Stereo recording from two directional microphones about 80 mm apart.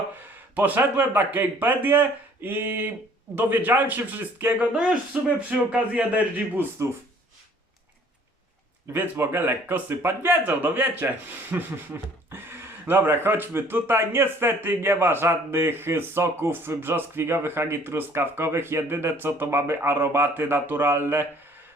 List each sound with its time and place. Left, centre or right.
0.5 s a man's voice: right
4.7 s a man's voice: centre
8.9 s a man's voice: right
11.9 s a sound: right
12.8 s a man's voice: right